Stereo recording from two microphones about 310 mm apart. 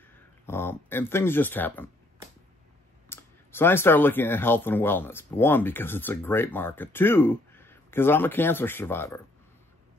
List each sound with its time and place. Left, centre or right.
0.0 s speech: centre
3.1 s speech: centre